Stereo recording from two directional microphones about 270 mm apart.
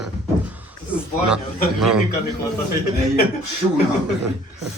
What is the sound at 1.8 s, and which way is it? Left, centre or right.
Speech, centre.